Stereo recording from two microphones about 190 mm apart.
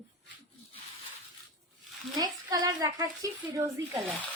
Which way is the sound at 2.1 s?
20° right (ahead or behind).